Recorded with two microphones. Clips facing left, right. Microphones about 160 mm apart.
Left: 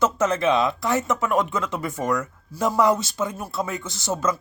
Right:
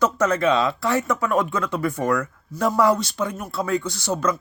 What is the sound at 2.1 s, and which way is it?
Speech, centre (ahead or behind).